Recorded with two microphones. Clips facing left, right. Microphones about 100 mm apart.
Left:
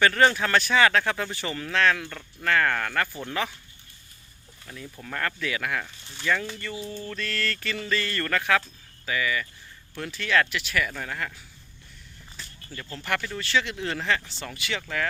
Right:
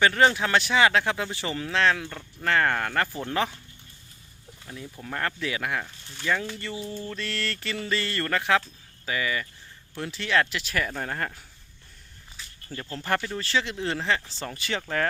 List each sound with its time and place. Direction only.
0.0 s speech: 20° right (ahead or behind)
4.6 s speech: 20° right (ahead or behind)
5.8 s speech: centre (ahead or behind)
6.6 s speech: 25° right (ahead or behind)
12.9 s speech: 35° right (ahead or behind)